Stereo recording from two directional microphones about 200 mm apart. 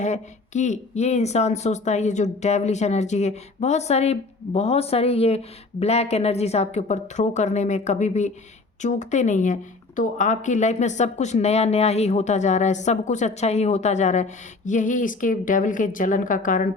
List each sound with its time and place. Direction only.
0.0 s speech: 35° left (ahead or behind)